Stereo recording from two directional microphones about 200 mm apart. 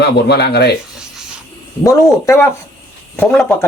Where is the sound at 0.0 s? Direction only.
55° left (ahead or behind).